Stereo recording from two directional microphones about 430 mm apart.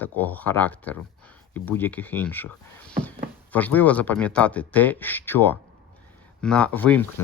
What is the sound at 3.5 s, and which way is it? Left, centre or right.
Speech, centre.